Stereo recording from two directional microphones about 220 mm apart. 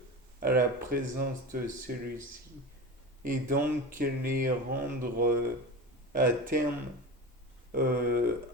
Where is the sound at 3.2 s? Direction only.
40° right (ahead or behind).